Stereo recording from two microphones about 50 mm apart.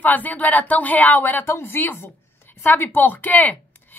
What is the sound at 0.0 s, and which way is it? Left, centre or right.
A woman's voice, left.